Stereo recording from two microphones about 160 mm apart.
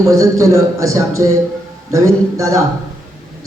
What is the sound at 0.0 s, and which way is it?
Speech, 20° right (ahead or behind).